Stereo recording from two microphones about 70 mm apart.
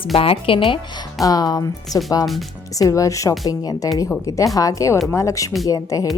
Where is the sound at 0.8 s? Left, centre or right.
Left.